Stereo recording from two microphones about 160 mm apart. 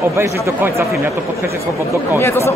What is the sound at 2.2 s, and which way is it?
Speech, 15° left (ahead or behind).